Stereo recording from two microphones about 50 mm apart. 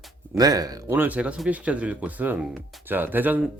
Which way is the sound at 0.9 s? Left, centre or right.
Right.